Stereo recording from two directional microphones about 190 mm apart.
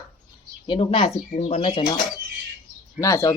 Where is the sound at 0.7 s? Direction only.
30° left (ahead or behind).